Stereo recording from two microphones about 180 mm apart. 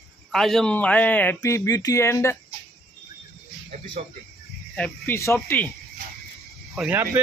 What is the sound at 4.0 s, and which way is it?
Speech, 40° right (ahead or behind).